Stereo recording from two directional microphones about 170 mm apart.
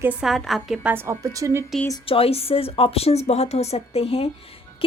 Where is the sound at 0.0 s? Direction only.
5° right (ahead or behind).